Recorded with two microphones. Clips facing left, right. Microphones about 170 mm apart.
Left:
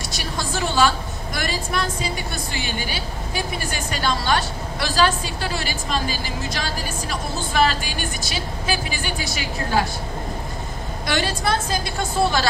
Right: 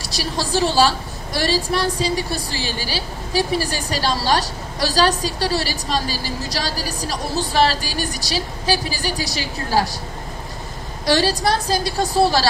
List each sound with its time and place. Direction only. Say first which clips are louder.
0.1 s a woman's voice: right 7 dB; 35° right (ahead or behind)
11.1 s a woman's voice: right 5 dB; 35° right (ahead or behind)